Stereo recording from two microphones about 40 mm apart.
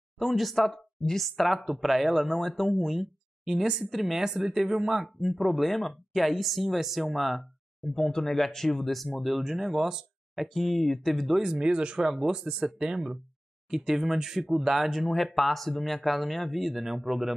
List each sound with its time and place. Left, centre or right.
0.2 s speech: centre
10.3 s speech: centre
11.5 s speech: right; by 17.3 s centre